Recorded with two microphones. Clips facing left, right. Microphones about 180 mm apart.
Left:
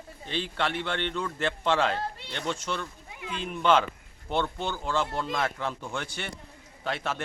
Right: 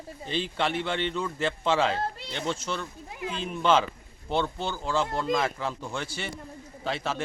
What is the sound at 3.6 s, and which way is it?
A man's voice, centre (ahead or behind).